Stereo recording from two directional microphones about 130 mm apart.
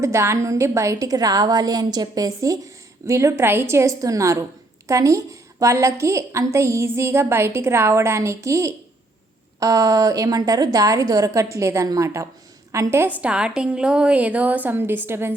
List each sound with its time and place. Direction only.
0.0 s a woman's voice: 20° right (ahead or behind)
13.2 s a woman's voice: 5° right (ahead or behind)